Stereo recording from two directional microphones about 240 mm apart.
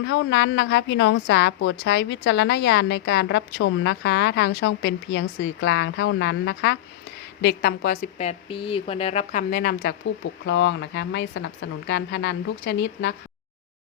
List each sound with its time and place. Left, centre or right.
0.0 s a woman's voice: left
10.4 s a woman's voice: left